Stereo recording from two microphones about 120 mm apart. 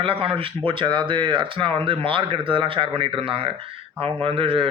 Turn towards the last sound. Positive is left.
turn(degrees=-50)  # may be behind; listen again after turning